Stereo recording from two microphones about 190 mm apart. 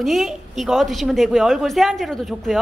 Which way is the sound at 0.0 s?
Centre (ahead or behind).